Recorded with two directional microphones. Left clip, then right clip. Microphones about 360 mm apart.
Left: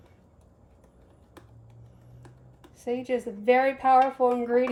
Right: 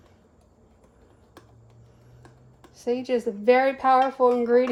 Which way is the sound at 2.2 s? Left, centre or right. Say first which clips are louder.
Right 1 dB; centre.